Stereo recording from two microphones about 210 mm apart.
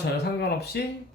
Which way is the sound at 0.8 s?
55° left (ahead or behind).